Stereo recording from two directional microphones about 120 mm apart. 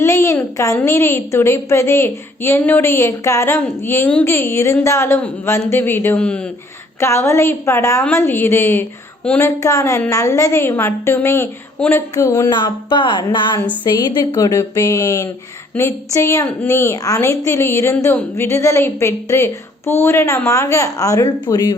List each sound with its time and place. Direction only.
0.0 s a sound: 25° left (ahead or behind)
0.5 s a woman's voice: 25° left (ahead or behind); by 6.5 s 10° left (ahead or behind)
7.0 s a woman's voice: 25° left (ahead or behind)
9.4 s a woman's voice: 25° left (ahead or behind)
12.5 s music: 40° left (ahead or behind)
13.8 s a woman's voice: 35° left (ahead or behind)